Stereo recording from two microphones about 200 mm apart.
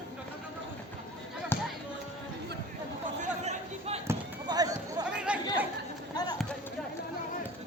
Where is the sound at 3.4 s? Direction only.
30° right (ahead or behind).